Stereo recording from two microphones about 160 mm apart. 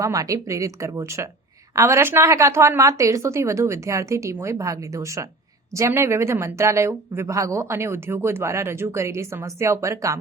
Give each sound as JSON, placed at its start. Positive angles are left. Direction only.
{"t": 0.0, "sound": "speech", "side_deg": -20}